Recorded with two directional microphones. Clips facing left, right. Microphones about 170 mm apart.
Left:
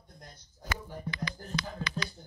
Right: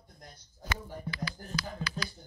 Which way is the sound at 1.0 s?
Centre (ahead or behind).